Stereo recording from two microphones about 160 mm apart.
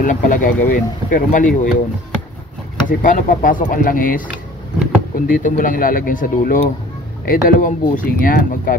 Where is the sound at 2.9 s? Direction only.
55° left (ahead or behind).